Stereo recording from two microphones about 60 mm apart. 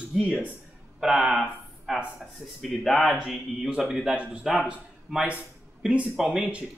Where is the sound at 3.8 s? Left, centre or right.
Centre.